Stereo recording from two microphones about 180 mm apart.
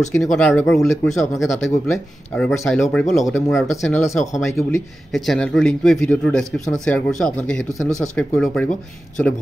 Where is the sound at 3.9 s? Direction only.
15° left (ahead or behind).